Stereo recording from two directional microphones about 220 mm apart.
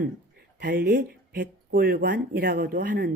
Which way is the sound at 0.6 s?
45° right (ahead or behind).